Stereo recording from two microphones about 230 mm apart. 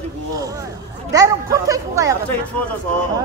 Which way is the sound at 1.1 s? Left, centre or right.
Centre.